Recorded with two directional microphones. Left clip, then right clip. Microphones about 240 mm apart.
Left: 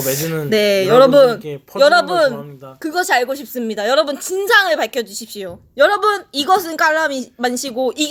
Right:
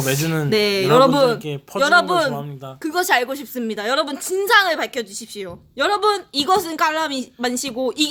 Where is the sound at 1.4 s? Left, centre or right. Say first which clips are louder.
Even; right.